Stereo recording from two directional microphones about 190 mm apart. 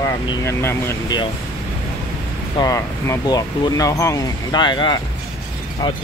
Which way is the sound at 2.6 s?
20° left (ahead or behind).